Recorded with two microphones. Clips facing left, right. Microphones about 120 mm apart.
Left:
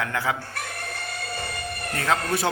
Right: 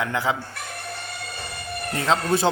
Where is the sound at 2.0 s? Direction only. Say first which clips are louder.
Right 3 dB; 25° right (ahead or behind).